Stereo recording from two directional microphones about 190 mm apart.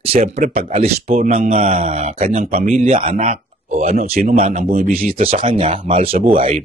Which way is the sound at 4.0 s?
50° right (ahead or behind).